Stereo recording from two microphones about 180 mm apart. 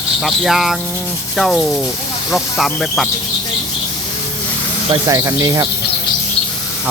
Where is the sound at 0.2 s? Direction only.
Centre (ahead or behind).